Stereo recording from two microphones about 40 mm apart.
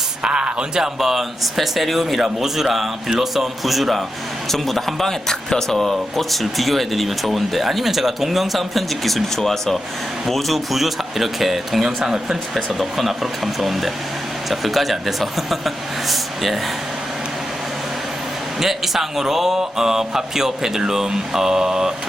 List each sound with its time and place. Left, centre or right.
0.2 s speech: right
0.8 s speech: centre
12.8 s speech: centre
18.6 s speech: centre